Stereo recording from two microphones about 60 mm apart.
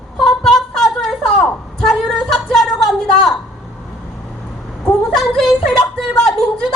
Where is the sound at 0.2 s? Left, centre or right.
Centre.